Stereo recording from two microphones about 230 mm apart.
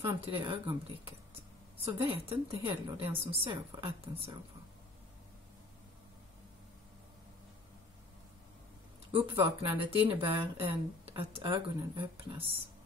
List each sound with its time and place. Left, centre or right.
0.0 s speech: right
9.1 s speech: right